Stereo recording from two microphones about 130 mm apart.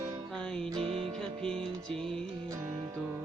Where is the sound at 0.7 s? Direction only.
45° right (ahead or behind).